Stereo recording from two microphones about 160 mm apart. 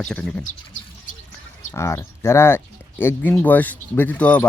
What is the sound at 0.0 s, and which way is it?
Speech, 5° left (ahead or behind).